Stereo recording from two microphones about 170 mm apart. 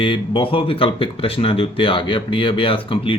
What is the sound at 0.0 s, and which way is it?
Speech, 30° left (ahead or behind).